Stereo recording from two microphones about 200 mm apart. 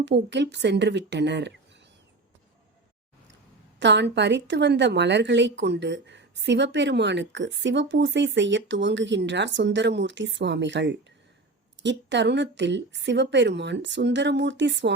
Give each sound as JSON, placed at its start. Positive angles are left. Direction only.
{"t": 0.0, "sound": "speech", "side_deg": -60}
{"t": 3.8, "sound": "speech", "side_deg": -60}